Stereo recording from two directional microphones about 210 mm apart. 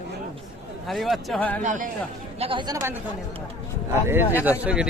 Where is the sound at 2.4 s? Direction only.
25° right (ahead or behind).